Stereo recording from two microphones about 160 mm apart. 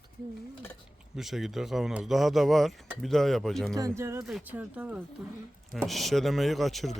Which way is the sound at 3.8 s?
20° right (ahead or behind).